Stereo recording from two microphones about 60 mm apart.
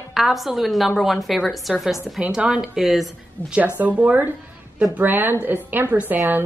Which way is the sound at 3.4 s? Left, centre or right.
Left.